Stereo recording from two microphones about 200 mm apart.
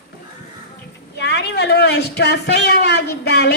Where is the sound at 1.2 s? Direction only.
55° left (ahead or behind).